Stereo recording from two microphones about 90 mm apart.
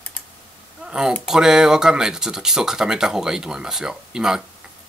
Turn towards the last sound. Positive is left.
turn(degrees=-5)  # may be behind; listen again after turning